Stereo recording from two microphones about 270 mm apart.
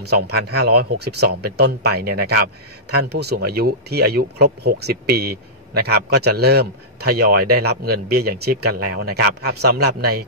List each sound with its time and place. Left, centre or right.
0.0 s speech: right